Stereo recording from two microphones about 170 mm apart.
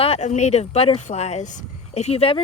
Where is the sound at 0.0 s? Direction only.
40° left (ahead or behind).